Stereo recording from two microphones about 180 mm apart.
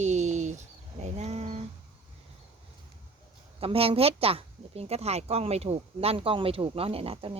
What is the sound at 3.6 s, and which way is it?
Speech, 30° right (ahead or behind).